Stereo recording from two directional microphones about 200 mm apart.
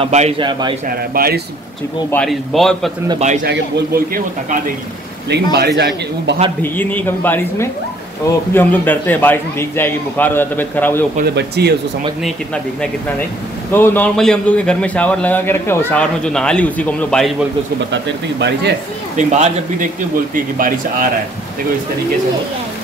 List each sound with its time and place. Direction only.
0.0 s speech: 35° right (ahead or behind)
0.4 s a man's voice: 25° right (ahead or behind)
0.8 s speech: 50° right (ahead or behind)
2.0 s a man's voice: 5° left (ahead or behind)
3.4 s speech: 50° right (ahead or behind)
5.3 s a man's voice: 55° right (ahead or behind)
6.6 s a man's voice: 10° left (ahead or behind)
11.2 s a man's voice: 55° right (ahead or behind)
13.7 s a man's voice: 10° left (ahead or behind)
19.1 s speech: 35° right (ahead or behind)